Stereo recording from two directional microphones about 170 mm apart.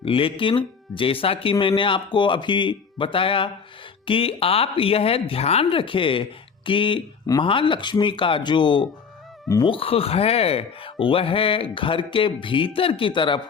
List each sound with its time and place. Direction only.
0.0 s speech: 30° left (ahead or behind)